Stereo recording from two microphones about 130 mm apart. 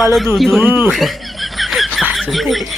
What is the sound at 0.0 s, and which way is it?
Speech, centre (ahead or behind).